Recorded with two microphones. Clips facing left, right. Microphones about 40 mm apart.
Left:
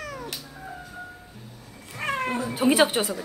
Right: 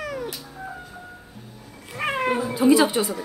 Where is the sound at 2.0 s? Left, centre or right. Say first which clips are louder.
Right 4 dB; right.